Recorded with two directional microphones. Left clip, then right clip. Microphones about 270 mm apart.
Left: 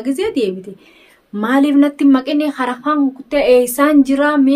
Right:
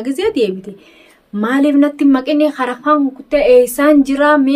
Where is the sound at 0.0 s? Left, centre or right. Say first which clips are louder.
Right 2 dB; centre.